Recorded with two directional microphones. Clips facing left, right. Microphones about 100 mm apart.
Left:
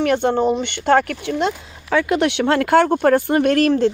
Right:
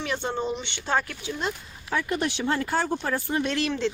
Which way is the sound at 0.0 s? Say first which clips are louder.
Left 12 dB; 60° left (ahead or behind).